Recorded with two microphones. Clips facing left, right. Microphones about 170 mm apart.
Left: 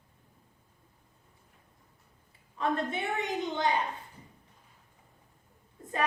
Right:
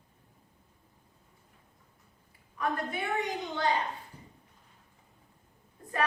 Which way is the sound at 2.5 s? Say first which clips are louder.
Left 2 dB; 25° left (ahead or behind).